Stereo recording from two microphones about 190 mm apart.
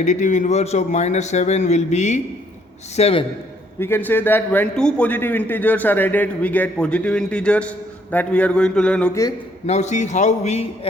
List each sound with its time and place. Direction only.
0.0 s a man's voice: 40° left (ahead or behind)
3.8 s a man's voice: 10° left (ahead or behind)
9.6 s a man's voice: 35° left (ahead or behind)